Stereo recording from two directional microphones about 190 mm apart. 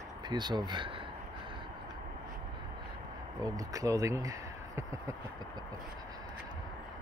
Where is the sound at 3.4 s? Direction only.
20° right (ahead or behind).